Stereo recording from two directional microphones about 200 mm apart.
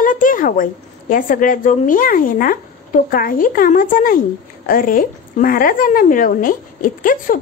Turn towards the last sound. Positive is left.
turn(degrees=45)  # may be behind; listen again after turning